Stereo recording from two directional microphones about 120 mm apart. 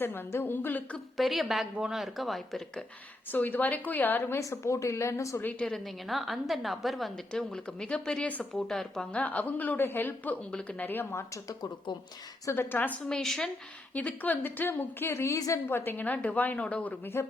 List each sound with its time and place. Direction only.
0.0 s a woman's voice: 20° left (ahead or behind)
1.1 s a woman's voice: centre (ahead or behind)
3.3 s a woman's voice: 15° left (ahead or behind)
13.1 s a woman's voice: 5° left (ahead or behind)